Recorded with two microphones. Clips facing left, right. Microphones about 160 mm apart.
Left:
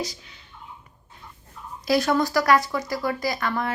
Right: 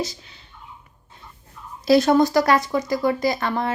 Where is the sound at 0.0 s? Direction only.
25° right (ahead or behind).